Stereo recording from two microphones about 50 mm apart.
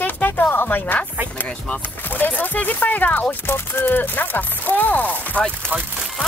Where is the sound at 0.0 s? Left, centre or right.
Left.